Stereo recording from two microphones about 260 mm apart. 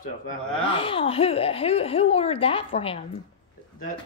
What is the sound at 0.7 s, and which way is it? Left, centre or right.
Speech, left.